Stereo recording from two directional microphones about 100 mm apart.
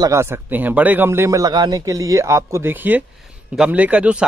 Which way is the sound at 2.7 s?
20° right (ahead or behind).